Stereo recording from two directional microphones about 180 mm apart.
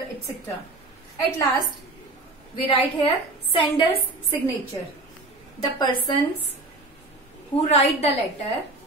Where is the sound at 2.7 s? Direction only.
30° left (ahead or behind).